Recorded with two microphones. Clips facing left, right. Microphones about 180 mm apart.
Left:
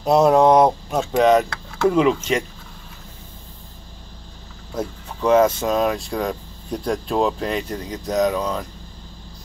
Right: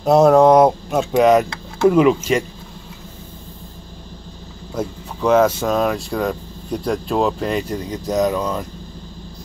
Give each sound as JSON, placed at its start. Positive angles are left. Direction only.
{"t": 0.0, "sound": "speech", "side_deg": 0}
{"t": 4.7, "sound": "speech", "side_deg": 0}